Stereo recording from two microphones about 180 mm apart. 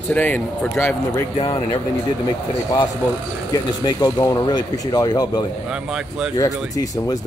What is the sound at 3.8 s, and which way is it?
Speech, 20° left (ahead or behind).